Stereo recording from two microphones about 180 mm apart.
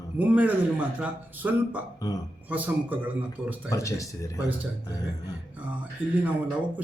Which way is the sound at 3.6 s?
20° left (ahead or behind).